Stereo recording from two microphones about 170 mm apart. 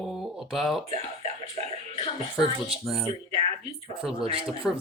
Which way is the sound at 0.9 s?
40° right (ahead or behind).